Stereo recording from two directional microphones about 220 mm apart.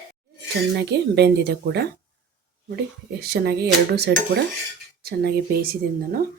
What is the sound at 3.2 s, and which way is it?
Speech, 45° right (ahead or behind).